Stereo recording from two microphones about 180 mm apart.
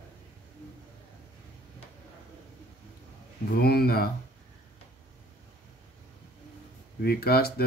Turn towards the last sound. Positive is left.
turn(degrees=60)  # may be behind; listen again after turning